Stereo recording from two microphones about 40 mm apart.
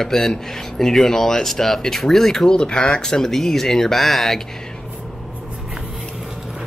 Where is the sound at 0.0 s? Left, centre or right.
Centre.